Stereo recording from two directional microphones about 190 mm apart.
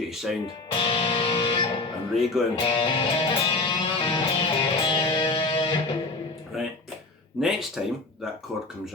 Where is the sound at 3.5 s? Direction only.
25° left (ahead or behind).